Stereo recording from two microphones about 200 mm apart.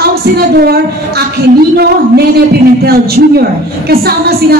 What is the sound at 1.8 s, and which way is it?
A woman's voice, 50° right (ahead or behind).